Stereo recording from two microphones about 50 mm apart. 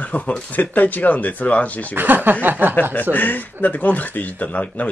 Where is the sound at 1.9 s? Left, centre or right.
Right.